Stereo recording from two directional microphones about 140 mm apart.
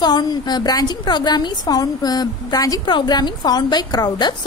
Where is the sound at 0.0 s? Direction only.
30° left (ahead or behind).